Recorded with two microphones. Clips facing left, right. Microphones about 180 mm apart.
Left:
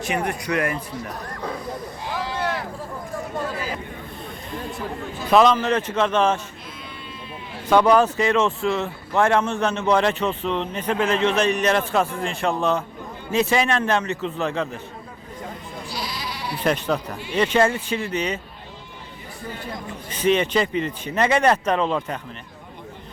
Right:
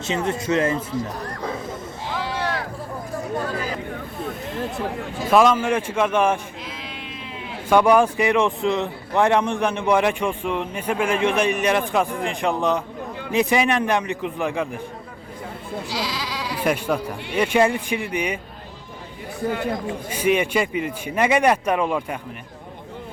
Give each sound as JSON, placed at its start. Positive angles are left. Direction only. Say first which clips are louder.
{"t": 0.0, "sound": "speech", "louder": "right 1 dB", "side_deg": -25}
{"t": 1.5, "sound": "snake", "louder": "even", "side_deg": -25}
{"t": 5.3, "sound": "speech", "louder": "even", "side_deg": -10}
{"t": 6.7, "sound": "sheep", "louder": "right 3 dB", "side_deg": -90}
{"t": 7.7, "sound": "speech", "louder": "even", "side_deg": -10}
{"t": 15.9, "sound": "sheep", "louder": "right 2 dB", "side_deg": -90}
{"t": 16.6, "sound": "speech", "louder": "even", "side_deg": -10}
{"t": 19.5, "sound": "speech", "louder": "right 9 dB", "side_deg": -90}
{"t": 20.1, "sound": "speech", "louder": "left 1 dB", "side_deg": -10}